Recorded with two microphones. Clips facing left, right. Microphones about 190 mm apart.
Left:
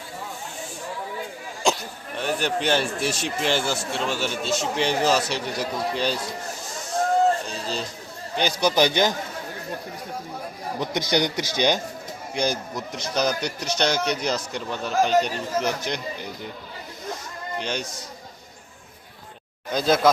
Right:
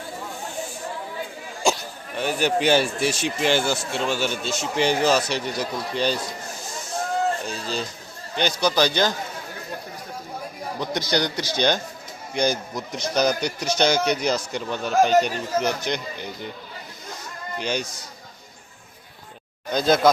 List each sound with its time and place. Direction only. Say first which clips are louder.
2.1 s speech: right 3 dB; 5° right (ahead or behind)
8.4 s a man's voice: right 1 dB; 5° left (ahead or behind)
8.6 s a man's voice: left 1 dB; 20° left (ahead or behind)
10.8 s a man's voice: left 1 dB; 20° left (ahead or behind)
12.3 s speech: right 2 dB; centre (ahead or behind)
17.6 s speech: right 3 dB; 5° right (ahead or behind)
19.7 s speech: right 1 dB; 5° left (ahead or behind)